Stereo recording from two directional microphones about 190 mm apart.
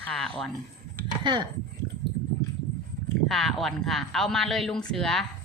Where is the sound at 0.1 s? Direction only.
5° left (ahead or behind).